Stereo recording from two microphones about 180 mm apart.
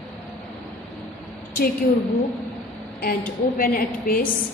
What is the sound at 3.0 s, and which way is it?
A woman's voice, 55° left (ahead or behind).